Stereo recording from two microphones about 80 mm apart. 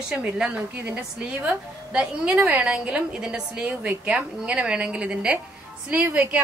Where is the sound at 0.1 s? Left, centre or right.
Centre.